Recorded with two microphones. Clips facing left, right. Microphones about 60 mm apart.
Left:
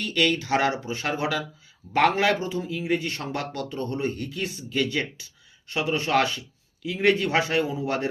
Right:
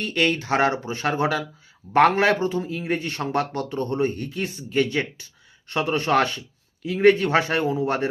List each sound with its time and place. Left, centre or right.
0.0 s speech: right